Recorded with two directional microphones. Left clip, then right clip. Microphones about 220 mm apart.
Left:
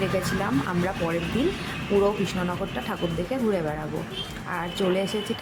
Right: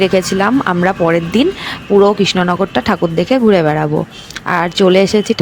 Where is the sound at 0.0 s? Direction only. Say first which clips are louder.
Right 14 dB; 35° right (ahead or behind).